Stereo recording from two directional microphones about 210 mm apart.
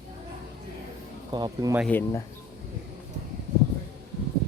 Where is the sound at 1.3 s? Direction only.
20° right (ahead or behind).